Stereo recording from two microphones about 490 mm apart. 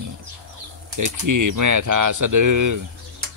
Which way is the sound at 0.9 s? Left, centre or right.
Right.